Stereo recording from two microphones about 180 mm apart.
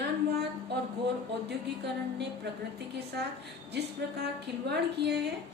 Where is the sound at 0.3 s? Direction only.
65° right (ahead or behind).